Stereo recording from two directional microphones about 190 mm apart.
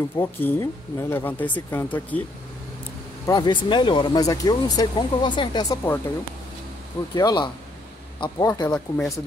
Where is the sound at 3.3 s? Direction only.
25° left (ahead or behind).